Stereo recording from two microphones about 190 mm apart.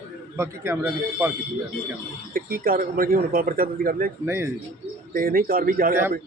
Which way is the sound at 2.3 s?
50° right (ahead or behind).